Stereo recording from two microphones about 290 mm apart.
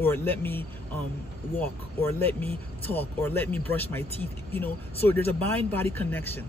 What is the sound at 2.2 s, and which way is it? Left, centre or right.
Speech, centre.